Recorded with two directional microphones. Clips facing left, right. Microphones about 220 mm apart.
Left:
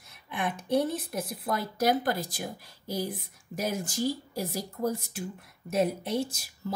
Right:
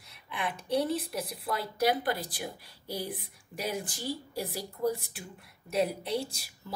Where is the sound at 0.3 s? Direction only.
50° left (ahead or behind).